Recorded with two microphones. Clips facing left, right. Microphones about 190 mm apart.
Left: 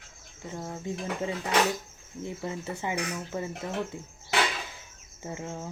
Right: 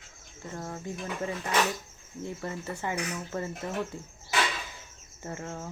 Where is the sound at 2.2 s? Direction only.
15° left (ahead or behind).